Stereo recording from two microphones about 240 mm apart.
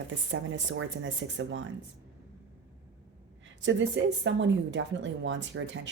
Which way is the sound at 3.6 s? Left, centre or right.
Right.